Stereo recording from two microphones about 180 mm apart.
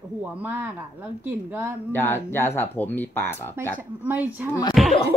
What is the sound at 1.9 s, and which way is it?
Speech, 15° left (ahead or behind).